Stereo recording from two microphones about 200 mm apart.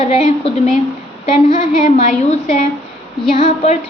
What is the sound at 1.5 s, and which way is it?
A woman's voice, 40° left (ahead or behind).